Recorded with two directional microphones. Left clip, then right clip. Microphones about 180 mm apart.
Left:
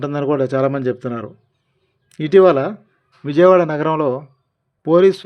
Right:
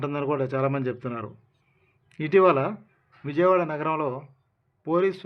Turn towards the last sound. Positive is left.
turn(degrees=45)  # may be behind; listen again after turning